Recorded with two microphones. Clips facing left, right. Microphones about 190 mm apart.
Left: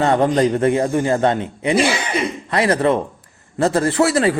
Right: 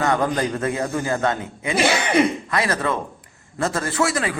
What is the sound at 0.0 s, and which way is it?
A man's voice, 30° left (ahead or behind).